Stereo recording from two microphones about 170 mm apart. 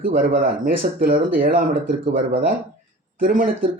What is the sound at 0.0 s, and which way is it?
Speech, 60° right (ahead or behind).